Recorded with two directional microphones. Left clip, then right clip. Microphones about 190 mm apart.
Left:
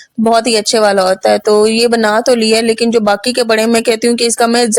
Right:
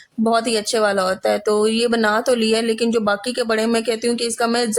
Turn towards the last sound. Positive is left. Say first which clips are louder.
# left 8 dB
turn(degrees=40)  # may be behind; listen again after turning